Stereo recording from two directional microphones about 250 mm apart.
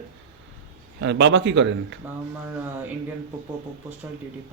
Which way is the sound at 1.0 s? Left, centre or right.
Right.